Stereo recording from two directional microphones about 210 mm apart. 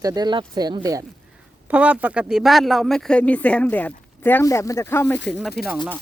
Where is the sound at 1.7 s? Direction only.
5° right (ahead or behind); by 5.2 s 10° left (ahead or behind).